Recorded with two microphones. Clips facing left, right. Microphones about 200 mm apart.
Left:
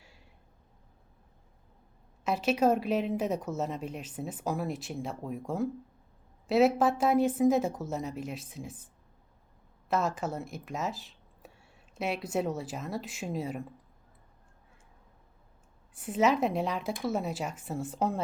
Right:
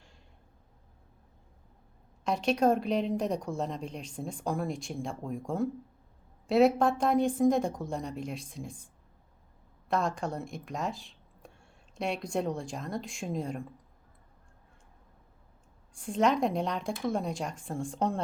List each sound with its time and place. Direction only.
2.2 s a woman's voice: 5° left (ahead or behind)
9.9 s speech: 5° left (ahead or behind)
16.0 s a woman's voice: 5° left (ahead or behind)